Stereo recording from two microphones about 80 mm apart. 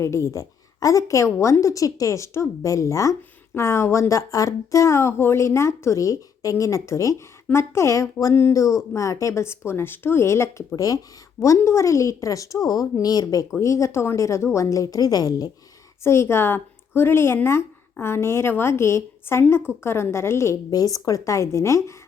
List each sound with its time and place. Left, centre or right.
0.0 s speech: left
10.8 s speech: left
13.6 s speech: left
16.0 s speech: left
20.7 s speech: left